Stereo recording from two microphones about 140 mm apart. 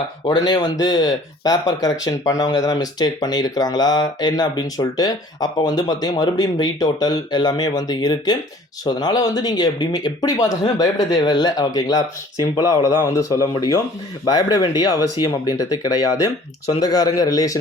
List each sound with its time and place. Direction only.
0.3 s speech: 30° left (ahead or behind)